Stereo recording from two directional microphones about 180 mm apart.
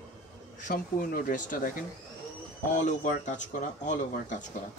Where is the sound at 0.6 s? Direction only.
50° left (ahead or behind).